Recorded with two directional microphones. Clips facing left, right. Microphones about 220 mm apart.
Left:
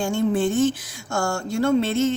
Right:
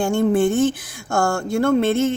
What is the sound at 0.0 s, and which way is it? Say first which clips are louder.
Speech: right 4 dB; 55° right (ahead or behind).